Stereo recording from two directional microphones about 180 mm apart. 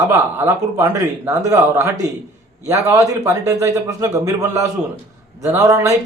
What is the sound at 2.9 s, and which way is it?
A man's voice, 15° right (ahead or behind).